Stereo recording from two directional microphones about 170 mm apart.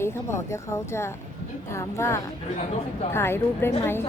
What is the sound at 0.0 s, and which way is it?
A woman's voice, 15° left (ahead or behind).